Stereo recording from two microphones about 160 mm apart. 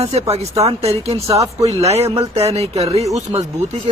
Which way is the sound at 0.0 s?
40° right (ahead or behind).